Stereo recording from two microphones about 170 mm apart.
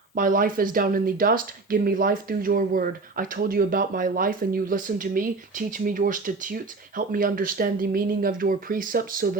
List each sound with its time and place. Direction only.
0.2 s speech: 55° right (ahead or behind)